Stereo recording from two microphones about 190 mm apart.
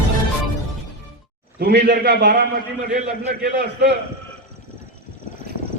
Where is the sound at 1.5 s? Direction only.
60° right (ahead or behind).